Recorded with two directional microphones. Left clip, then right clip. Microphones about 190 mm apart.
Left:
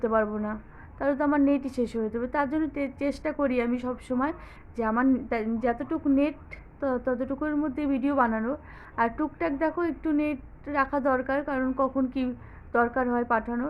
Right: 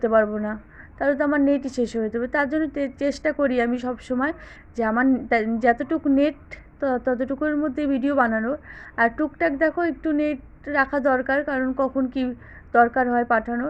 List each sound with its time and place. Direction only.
0.0 s a woman's voice: 15° right (ahead or behind)